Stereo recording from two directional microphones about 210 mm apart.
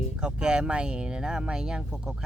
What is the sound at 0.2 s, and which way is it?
Speech, 5° right (ahead or behind).